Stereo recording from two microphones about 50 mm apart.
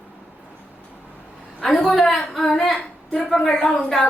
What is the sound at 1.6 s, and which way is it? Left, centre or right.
A woman's voice, centre.